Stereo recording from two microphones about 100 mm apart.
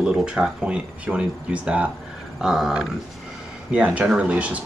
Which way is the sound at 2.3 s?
5° right (ahead or behind).